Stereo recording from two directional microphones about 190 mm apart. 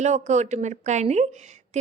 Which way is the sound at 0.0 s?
35° right (ahead or behind).